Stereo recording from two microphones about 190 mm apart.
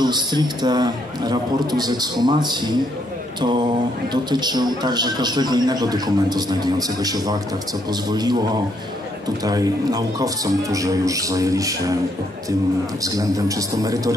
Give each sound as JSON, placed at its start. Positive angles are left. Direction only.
{"t": 0.0, "sound": "a man's voice", "side_deg": -20}
{"t": 4.1, "sound": "a man's voice", "side_deg": -20}
{"t": 9.4, "sound": "speech", "side_deg": -20}
{"t": 13.0, "sound": "a man's voice", "side_deg": -20}